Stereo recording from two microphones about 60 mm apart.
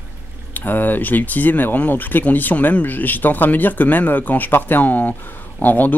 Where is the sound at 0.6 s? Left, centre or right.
Left.